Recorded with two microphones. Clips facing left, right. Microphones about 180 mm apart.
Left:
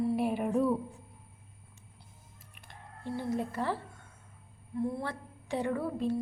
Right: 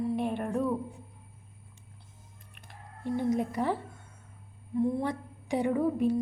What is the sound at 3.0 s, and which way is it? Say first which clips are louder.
A woman's voice: right 5 dB; 20° right (ahead or behind).